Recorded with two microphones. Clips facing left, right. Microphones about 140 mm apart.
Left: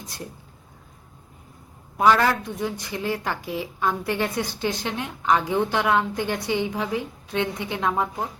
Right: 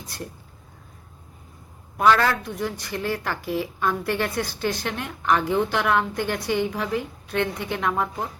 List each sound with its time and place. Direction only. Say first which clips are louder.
0.0 s speech: right 1 dB; 20° left (ahead or behind)
2.0 s a woman's voice: even; 15° left (ahead or behind)